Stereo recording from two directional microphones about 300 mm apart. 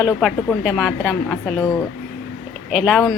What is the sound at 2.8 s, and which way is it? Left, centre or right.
Speech, centre.